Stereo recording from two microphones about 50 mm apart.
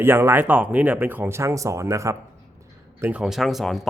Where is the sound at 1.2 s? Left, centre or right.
Right.